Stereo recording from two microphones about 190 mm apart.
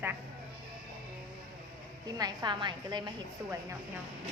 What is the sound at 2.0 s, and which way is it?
Speech, 20° right (ahead or behind).